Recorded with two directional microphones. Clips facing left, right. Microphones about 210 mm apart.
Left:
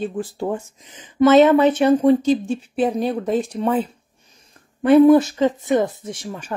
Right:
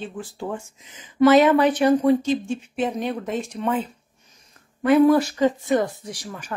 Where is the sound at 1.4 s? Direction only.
25° left (ahead or behind).